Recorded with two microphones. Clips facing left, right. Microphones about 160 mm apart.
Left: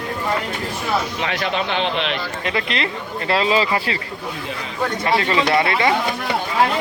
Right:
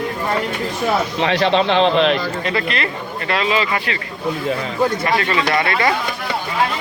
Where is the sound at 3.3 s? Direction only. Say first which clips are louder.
Left 1 dB; 30° left (ahead or behind).